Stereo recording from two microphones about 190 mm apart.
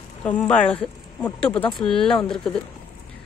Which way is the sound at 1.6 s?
25° left (ahead or behind).